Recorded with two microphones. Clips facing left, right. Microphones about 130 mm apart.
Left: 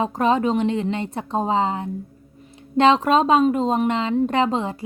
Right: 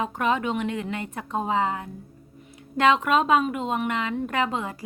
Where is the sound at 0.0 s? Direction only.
30° left (ahead or behind).